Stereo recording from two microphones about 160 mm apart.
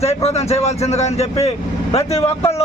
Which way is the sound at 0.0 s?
40° left (ahead or behind).